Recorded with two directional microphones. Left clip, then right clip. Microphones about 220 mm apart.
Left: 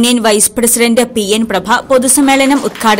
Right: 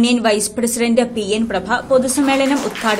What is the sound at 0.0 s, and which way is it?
A woman's voice, 30° left (ahead or behind).